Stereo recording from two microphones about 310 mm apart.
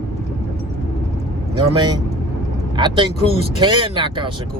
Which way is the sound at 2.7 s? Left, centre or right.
Centre.